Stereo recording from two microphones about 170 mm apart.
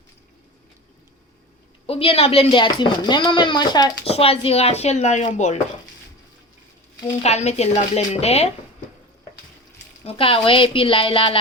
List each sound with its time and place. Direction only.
1.9 s speech: 35° left (ahead or behind)
4.0 s speech: 35° left (ahead or behind)
7.2 s speech: 40° left (ahead or behind)
10.1 s speech: 30° left (ahead or behind)